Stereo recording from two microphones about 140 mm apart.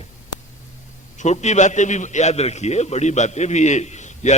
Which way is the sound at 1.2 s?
55° left (ahead or behind).